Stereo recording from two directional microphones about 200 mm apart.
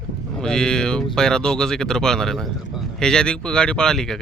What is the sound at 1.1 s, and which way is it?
Speech, 5° left (ahead or behind).